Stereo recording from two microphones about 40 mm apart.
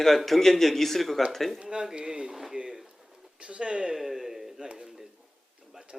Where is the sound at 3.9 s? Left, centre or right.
Centre.